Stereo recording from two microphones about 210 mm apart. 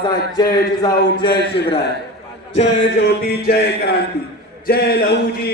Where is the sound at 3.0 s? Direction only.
50° left (ahead or behind).